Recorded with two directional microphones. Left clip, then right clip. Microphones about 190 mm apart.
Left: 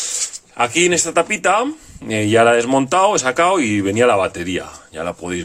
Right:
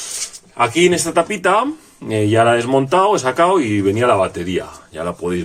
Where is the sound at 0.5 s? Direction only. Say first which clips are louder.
Right 2 dB; 40° left (ahead or behind).